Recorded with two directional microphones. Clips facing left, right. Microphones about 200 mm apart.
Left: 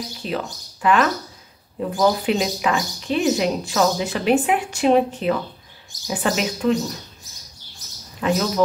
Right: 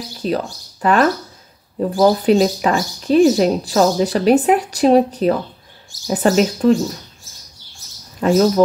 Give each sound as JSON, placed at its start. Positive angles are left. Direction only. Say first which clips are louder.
{"t": 0.2, "sound": "speech", "louder": "right 7 dB", "side_deg": -40}
{"t": 8.2, "sound": "speech", "louder": "right 5 dB", "side_deg": -40}